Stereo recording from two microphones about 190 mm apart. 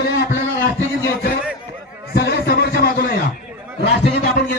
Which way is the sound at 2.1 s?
60° left (ahead or behind).